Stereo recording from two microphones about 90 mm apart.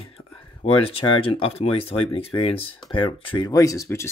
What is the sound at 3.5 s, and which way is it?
Speech, 35° left (ahead or behind).